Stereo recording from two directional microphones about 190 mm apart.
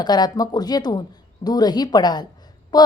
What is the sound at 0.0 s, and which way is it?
Speech, 20° left (ahead or behind).